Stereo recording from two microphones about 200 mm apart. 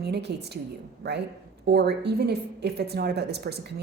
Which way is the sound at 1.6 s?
55° right (ahead or behind).